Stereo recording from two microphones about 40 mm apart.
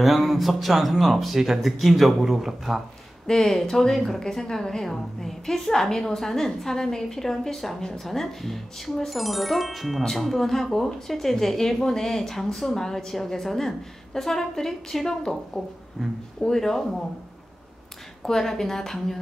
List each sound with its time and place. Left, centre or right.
0.0 s speech: centre
3.3 s speech: centre
16.0 s speech: centre
16.3 s speech: centre
18.2 s speech: centre